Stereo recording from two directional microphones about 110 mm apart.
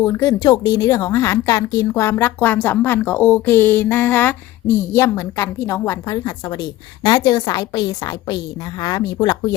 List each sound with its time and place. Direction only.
0.0 s a woman's voice: 25° left (ahead or behind)